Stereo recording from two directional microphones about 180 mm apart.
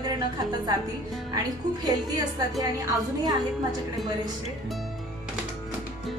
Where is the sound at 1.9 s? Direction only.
20° right (ahead or behind).